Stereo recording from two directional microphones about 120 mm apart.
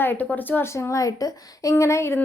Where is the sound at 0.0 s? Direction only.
15° left (ahead or behind).